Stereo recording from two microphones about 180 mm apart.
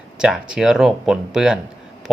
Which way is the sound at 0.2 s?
5° right (ahead or behind).